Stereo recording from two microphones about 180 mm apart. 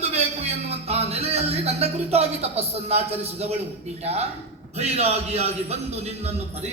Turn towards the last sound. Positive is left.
turn(degrees=-35)  # may be behind; listen again after turning